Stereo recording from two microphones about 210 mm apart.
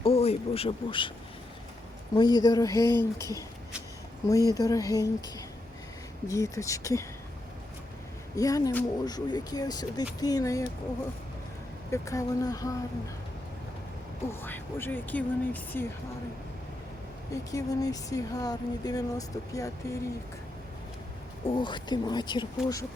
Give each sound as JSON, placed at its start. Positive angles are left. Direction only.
{"t": 0.0, "sound": "speech", "side_deg": 30}
{"t": 2.1, "sound": "speech", "side_deg": 20}
{"t": 8.4, "sound": "speech", "side_deg": 15}
{"t": 11.9, "sound": "speech", "side_deg": 15}
{"t": 14.3, "sound": "speech", "side_deg": 10}
{"t": 17.5, "sound": "speech", "side_deg": 15}
{"t": 21.4, "sound": "speech", "side_deg": 20}